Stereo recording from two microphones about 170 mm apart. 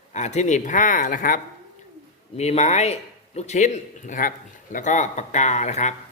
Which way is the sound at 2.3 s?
40° left (ahead or behind).